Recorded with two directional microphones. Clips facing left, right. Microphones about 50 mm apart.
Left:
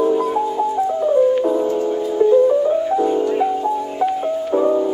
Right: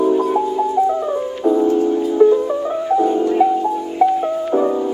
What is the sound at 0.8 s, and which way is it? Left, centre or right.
Music, right.